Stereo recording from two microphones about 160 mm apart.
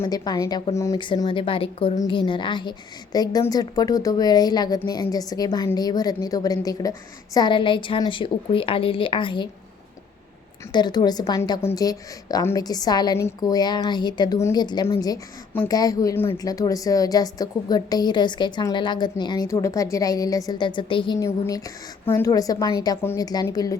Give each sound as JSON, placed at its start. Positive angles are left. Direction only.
{"t": 0.0, "sound": "a woman's voice", "side_deg": 25}
{"t": 1.0, "sound": "a woman's voice", "side_deg": 30}
{"t": 10.7, "sound": "a woman's voice", "side_deg": 25}
{"t": 21.2, "sound": "a woman's voice", "side_deg": 20}